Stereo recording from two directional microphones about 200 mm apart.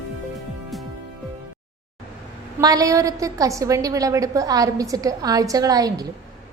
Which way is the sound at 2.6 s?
20° right (ahead or behind).